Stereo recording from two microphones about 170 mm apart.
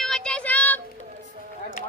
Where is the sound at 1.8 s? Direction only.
50° left (ahead or behind).